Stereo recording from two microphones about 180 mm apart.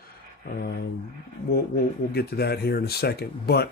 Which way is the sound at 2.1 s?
65° left (ahead or behind).